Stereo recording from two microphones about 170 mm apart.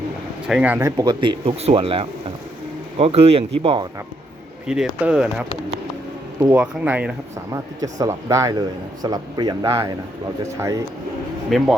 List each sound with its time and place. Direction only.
0.4 s speech: 5° right (ahead or behind)
0.9 s speech: 25° right (ahead or behind)
4.6 s speech: 5° right (ahead or behind)
7.5 s speech: 20° right (ahead or behind)
11.4 s speech: centre (ahead or behind)